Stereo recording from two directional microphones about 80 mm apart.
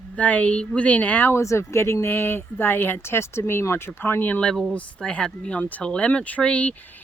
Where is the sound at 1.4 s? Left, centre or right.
Left.